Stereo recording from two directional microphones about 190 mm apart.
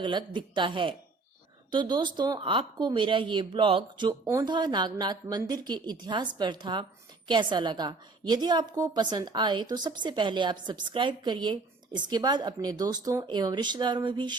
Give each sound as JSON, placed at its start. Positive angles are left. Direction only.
{"t": 0.0, "sound": "a woman's voice", "side_deg": -25}